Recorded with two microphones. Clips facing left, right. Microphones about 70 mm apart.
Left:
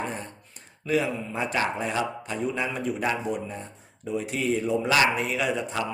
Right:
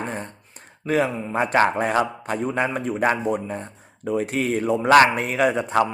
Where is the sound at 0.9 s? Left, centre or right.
Right.